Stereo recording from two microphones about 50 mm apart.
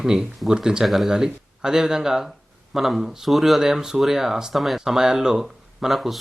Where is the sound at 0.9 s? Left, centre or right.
Centre.